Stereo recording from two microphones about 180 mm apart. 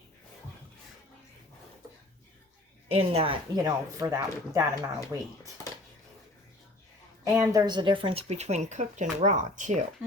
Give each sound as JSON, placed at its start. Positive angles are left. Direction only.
{"t": 2.9, "sound": "speech", "side_deg": -35}
{"t": 7.3, "sound": "speech", "side_deg": -20}